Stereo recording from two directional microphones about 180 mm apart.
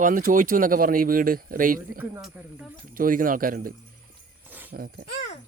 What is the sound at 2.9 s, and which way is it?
Speech, 50° right (ahead or behind).